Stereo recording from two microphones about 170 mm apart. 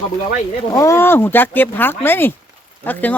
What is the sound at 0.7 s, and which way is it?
Speech, 20° left (ahead or behind).